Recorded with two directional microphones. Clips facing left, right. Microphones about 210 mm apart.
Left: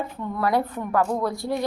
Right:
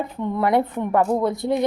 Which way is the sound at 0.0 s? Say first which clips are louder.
Right 4 dB; 20° right (ahead or behind).